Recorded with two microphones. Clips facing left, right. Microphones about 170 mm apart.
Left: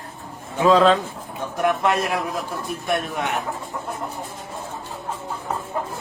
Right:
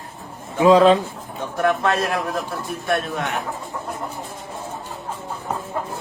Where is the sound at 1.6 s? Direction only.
15° left (ahead or behind).